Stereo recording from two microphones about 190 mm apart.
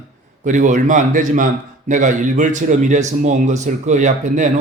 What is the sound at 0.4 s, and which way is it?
A man's voice, 40° right (ahead or behind).